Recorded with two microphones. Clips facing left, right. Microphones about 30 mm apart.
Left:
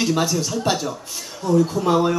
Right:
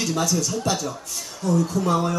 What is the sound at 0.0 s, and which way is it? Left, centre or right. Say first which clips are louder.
Speech: left 3 dB; left.